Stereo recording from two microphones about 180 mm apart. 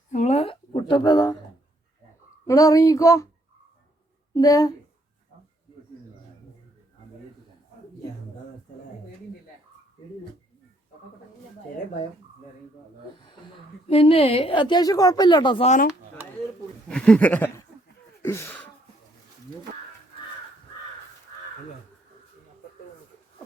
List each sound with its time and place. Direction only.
0.1 s a sound: 40° left (ahead or behind); by 1.4 s 25° left (ahead or behind)
2.5 s speech: 20° left (ahead or behind)
4.4 s a woman's voice: 20° left (ahead or behind)
13.8 s a woman's voice: 35° left (ahead or behind)
16.9 s speech: 5° left (ahead or behind)
18.2 s a sound: 15° left (ahead or behind)